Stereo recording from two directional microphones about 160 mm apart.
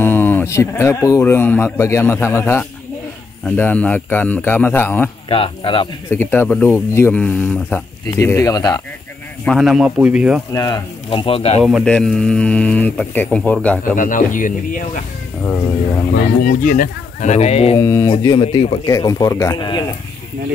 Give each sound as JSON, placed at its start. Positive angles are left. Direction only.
{"t": 0.0, "sound": "speech", "side_deg": 15}
{"t": 5.3, "sound": "speech", "side_deg": 35}
{"t": 6.0, "sound": "speech", "side_deg": 15}
{"t": 9.4, "sound": "speech", "side_deg": 0}
{"t": 10.5, "sound": "speech", "side_deg": 20}
{"t": 11.1, "sound": "speech", "side_deg": 35}
{"t": 11.6, "sound": "speech", "side_deg": 0}
{"t": 13.9, "sound": "speech", "side_deg": 55}
{"t": 16.4, "sound": "speech", "side_deg": 60}
{"t": 17.7, "sound": "speech", "side_deg": 15}